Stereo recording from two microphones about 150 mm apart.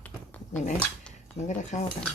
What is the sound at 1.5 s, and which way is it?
Speech, 55° left (ahead or behind).